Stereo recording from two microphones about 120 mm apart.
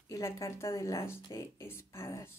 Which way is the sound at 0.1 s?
25° left (ahead or behind).